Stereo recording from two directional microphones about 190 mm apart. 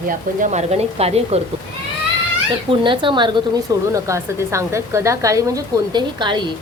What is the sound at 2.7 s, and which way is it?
A woman's voice, 25° right (ahead or behind).